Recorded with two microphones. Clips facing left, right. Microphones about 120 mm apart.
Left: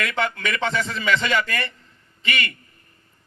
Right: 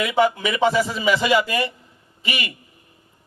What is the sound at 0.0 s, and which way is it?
A man's voice, 10° right (ahead or behind).